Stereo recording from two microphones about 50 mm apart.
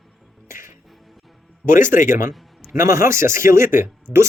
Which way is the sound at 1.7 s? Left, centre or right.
Right.